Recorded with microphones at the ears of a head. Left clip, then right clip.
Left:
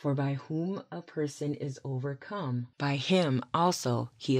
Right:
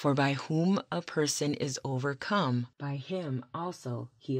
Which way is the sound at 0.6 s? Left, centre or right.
Right.